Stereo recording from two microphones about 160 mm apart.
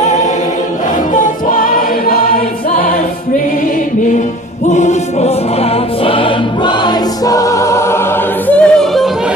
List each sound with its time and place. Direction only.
1.1 s music: 55° left (ahead or behind)
4.7 s music: 45° left (ahead or behind)
6.0 s choir: 35° left (ahead or behind)
7.2 s choir: 20° left (ahead or behind)
8.5 s singing: 10° left (ahead or behind)